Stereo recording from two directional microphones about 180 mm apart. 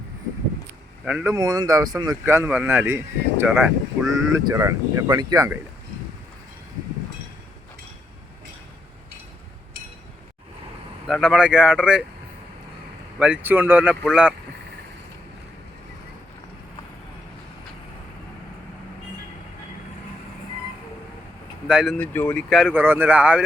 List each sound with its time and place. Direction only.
1.0 s speech: 5° right (ahead or behind)
1.3 s speech: 20° right (ahead or behind)
11.0 s speech: centre (ahead or behind)
13.1 s speech: 5° right (ahead or behind)
21.7 s speech: 5° right (ahead or behind)
21.9 s speech: 10° left (ahead or behind); by 23.4 s 10° right (ahead or behind)